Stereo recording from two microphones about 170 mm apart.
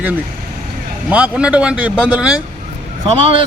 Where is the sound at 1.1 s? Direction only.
5° right (ahead or behind).